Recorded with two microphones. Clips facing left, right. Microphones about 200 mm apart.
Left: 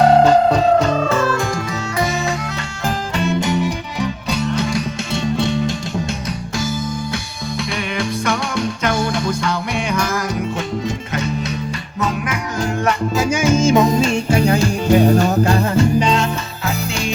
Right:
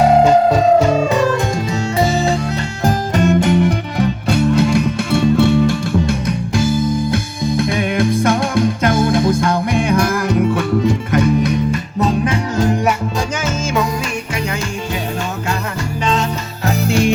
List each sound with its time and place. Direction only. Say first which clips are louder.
0.0 s music: right 1 dB; 10° right (ahead or behind)
2.0 s music: right 4 dB; 30° right (ahead or behind)
2.8 s music: right 5 dB; 45° right (ahead or behind)
11.9 s music: right 4 dB; 30° right (ahead or behind)
13.4 s music: left 8 dB; 15° left (ahead or behind); by 15.5 s 40° left (ahead or behind)
15.7 s music: left 6 dB; 20° left (ahead or behind)
16.6 s music: right 8 dB; 55° right (ahead or behind)